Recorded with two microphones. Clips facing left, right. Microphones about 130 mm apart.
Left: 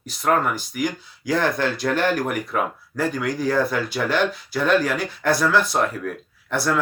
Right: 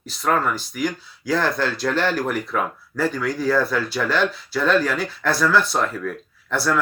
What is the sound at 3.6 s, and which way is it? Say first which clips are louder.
Speech: even; 50° left (ahead or behind).